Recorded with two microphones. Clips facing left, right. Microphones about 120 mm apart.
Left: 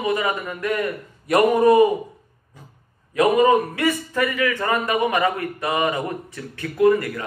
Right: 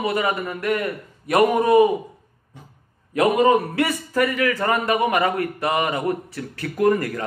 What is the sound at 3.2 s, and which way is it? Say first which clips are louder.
Speech: left 1 dB; 30° right (ahead or behind).